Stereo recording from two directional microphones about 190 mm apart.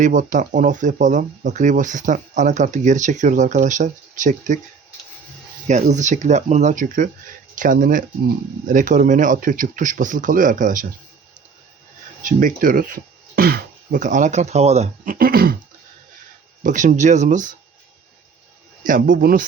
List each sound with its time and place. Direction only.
0.0 s speech: 40° right (ahead or behind)
5.6 s speech: 40° right (ahead or behind)
12.2 s speech: 45° right (ahead or behind)
16.6 s speech: 40° right (ahead or behind)
18.9 s speech: 45° right (ahead or behind)